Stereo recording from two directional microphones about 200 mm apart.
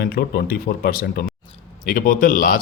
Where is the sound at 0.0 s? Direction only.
50° left (ahead or behind).